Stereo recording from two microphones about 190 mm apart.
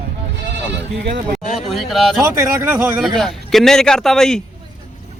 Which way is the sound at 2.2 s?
15° right (ahead or behind).